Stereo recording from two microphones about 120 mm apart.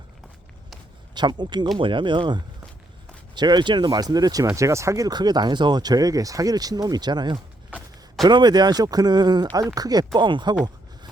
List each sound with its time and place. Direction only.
1.1 s speech: 40° right (ahead or behind)